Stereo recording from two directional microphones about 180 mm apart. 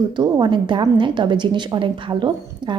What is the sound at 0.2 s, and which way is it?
A woman's voice, 25° right (ahead or behind).